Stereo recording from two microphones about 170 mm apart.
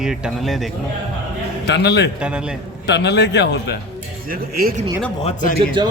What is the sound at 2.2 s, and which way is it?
Speech, 5° right (ahead or behind).